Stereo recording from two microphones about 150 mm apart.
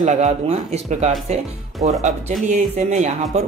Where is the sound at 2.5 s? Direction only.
55° right (ahead or behind).